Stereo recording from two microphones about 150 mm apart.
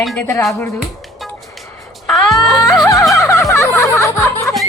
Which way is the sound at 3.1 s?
20° left (ahead or behind).